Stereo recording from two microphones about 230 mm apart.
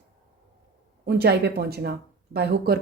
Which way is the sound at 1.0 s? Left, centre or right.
Right.